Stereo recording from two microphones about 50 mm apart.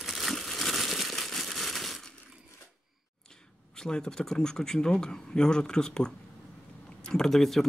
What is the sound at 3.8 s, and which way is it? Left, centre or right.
Speech, centre.